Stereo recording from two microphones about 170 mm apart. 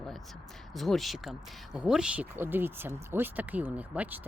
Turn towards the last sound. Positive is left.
turn(degrees=-10)  # may be behind; listen again after turning